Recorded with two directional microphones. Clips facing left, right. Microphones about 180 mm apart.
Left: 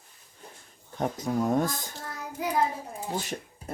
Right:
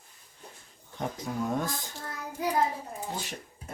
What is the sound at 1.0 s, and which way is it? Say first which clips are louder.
Speech: left 5 dB; 45° left (ahead or behind).